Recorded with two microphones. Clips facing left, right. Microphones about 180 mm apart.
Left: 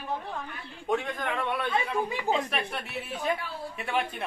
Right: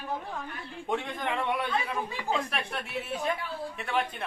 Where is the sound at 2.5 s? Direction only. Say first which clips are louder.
Left 1 dB; centre (ahead or behind).